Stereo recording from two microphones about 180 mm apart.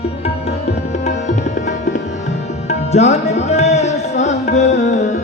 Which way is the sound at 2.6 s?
40° left (ahead or behind).